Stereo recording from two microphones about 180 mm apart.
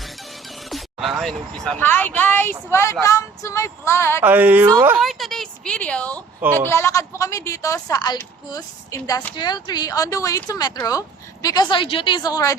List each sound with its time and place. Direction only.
0.7 s music: centre (ahead or behind)
1.2 s a woman's voice: centre (ahead or behind)
4.2 s a woman's voice: 10° right (ahead or behind); by 12.5 s 20° left (ahead or behind)